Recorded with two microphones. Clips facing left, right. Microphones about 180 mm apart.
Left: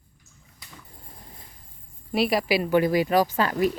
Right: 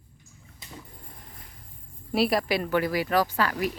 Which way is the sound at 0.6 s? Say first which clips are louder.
Right 4 dB; 25° right (ahead or behind).